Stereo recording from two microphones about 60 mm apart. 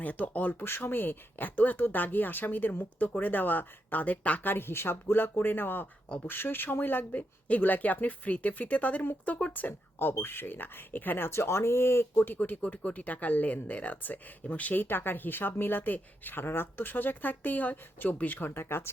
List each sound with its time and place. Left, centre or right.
0.0 s speech: left
0.6 s speech: left
11.3 s speech: left
18.5 s speech: left